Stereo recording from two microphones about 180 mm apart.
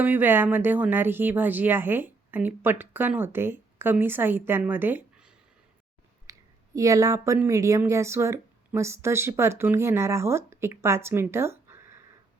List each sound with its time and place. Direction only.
0.0 s speech: 10° right (ahead or behind)
6.3 s a sound: 20° right (ahead or behind)
6.7 s speech: 20° right (ahead or behind)